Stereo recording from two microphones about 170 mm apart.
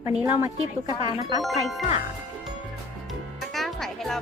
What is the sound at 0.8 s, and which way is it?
Speech, 25° right (ahead or behind).